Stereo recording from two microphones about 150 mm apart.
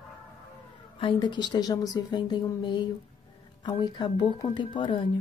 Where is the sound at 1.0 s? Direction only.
35° left (ahead or behind).